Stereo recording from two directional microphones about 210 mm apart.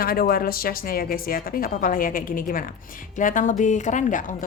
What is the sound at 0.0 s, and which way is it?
A woman's voice, 45° left (ahead or behind).